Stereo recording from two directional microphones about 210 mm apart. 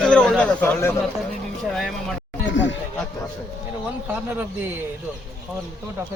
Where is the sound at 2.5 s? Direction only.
60° left (ahead or behind).